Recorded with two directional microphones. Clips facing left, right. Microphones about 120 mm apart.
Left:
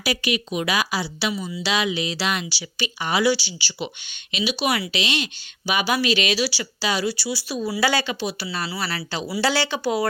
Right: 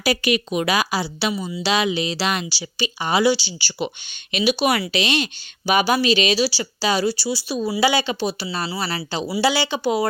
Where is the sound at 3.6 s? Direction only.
45° right (ahead or behind).